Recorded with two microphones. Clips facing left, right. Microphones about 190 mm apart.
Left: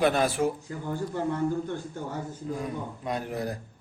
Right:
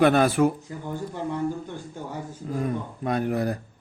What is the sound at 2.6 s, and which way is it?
Speech, 60° right (ahead or behind).